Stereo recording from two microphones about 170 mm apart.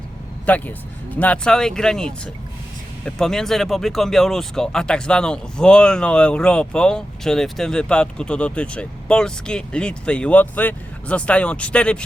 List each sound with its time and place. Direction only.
0.5 s speech: 10° left (ahead or behind)